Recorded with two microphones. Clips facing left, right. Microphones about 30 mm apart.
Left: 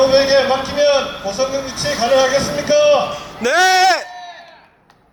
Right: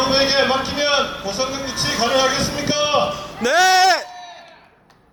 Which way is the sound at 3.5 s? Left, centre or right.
Centre.